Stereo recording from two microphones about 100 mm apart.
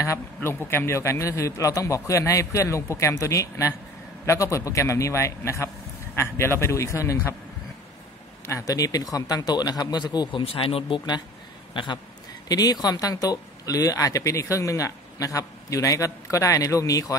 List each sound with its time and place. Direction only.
0.0 s a man's voice: 25° left (ahead or behind)
8.5 s speech: 30° left (ahead or behind)
10.4 s speech: 70° left (ahead or behind)
11.7 s speech: 55° left (ahead or behind)
12.4 s speech: 40° left (ahead or behind)